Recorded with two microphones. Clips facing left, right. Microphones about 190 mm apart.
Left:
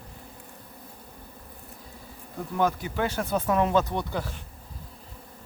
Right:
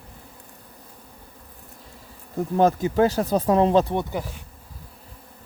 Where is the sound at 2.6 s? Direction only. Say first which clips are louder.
Right 7 dB; 40° right (ahead or behind).